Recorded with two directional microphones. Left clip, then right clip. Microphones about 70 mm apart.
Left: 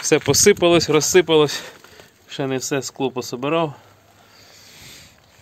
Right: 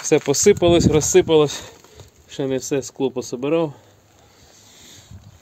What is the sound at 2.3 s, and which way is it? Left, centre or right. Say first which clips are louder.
Speech: right 1 dB; centre.